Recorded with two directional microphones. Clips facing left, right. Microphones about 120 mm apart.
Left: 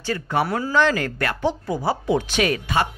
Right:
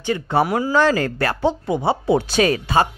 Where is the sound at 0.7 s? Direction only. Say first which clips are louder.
Right 2 dB; 35° right (ahead or behind).